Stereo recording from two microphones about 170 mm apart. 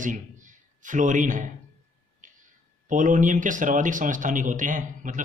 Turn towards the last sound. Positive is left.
turn(degrees=-50)  # may be behind; listen again after turning